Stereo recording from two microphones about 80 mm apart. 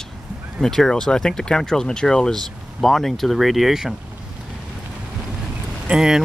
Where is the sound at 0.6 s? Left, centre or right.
Centre.